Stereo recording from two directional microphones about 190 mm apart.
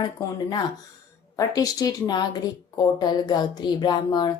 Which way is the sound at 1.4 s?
20° left (ahead or behind).